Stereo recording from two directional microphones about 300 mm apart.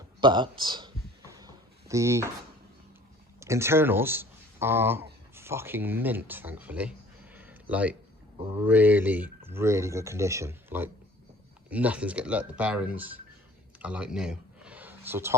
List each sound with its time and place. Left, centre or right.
0.2 s speech: centre
1.3 s drawer open or close: centre
3.4 s speech: centre
13.7 s a sound: centre